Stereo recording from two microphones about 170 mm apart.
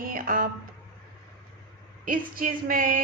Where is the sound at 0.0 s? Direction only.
55° right (ahead or behind).